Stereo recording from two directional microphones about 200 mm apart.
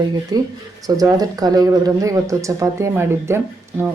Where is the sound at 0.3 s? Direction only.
20° right (ahead or behind).